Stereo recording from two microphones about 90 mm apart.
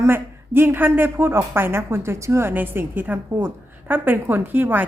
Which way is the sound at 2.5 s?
20° right (ahead or behind).